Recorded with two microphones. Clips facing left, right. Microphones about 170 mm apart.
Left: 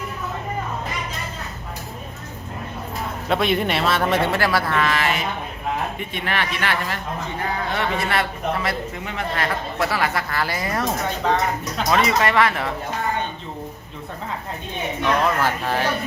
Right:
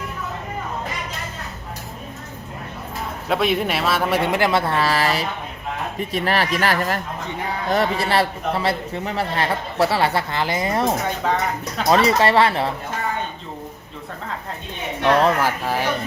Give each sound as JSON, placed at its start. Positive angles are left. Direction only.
{"t": 3.2, "sound": "a man's voice", "side_deg": 0}
{"t": 11.2, "sound": "speech", "side_deg": -5}
{"t": 11.9, "sound": "speech", "side_deg": -30}
{"t": 15.4, "sound": "a man's voice", "side_deg": -10}